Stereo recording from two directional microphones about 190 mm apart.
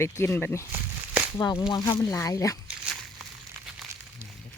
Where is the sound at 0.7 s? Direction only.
10° right (ahead or behind).